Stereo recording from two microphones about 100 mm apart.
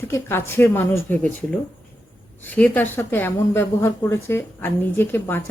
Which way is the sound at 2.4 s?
15° left (ahead or behind).